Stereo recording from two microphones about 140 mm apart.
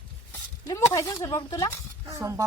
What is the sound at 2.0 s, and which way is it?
Speech, 20° right (ahead or behind).